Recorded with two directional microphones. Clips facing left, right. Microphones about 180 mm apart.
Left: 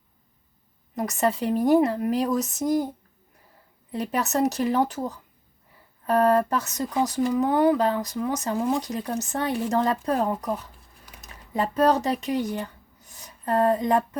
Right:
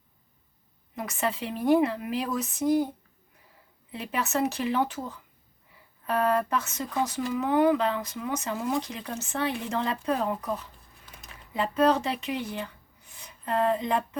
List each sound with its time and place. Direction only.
0.9 s speech: 40° left (ahead or behind)
3.9 s speech: 40° left (ahead or behind)